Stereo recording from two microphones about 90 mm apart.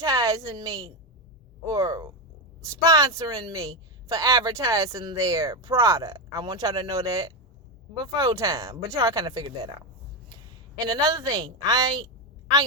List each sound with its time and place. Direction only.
0.0 s a woman's voice: 40° right (ahead or behind)
10.8 s a woman's voice: 50° right (ahead or behind)